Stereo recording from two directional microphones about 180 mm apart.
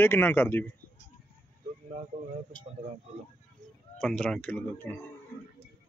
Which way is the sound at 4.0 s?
5° left (ahead or behind).